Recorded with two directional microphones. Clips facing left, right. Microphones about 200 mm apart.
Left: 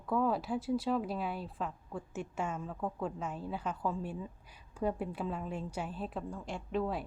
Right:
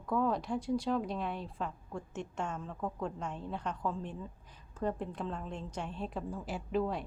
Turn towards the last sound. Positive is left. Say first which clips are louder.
# right 1 dB
turn(degrees=0)  # may be behind; listen again after turning